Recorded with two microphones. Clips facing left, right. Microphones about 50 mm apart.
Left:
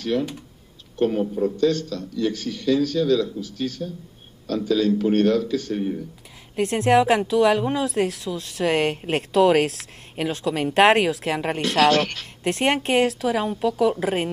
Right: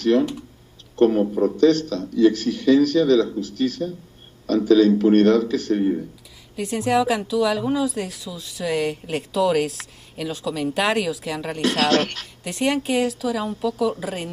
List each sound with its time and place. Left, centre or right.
0.9 s speech: right
6.6 s speech: left
10.1 s speech: left
11.9 s speech: right
12.4 s a woman's voice: left
13.5 s a woman's voice: left
13.7 s speech: left